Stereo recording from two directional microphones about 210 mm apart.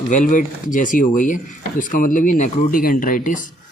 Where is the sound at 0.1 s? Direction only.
35° left (ahead or behind).